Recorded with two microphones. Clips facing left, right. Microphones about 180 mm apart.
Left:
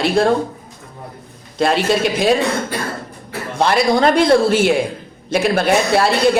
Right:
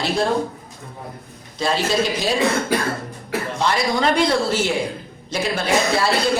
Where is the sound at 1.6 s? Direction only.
60° left (ahead or behind).